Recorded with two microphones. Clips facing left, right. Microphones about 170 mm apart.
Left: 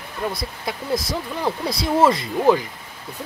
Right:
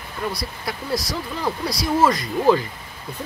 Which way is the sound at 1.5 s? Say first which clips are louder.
Left 1 dB; 25° left (ahead or behind).